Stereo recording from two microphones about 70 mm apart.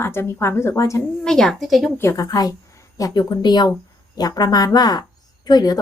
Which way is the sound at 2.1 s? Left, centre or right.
Left.